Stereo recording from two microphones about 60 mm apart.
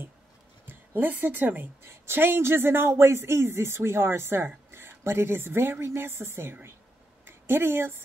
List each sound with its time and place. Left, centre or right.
0.7 s a woman's voice: right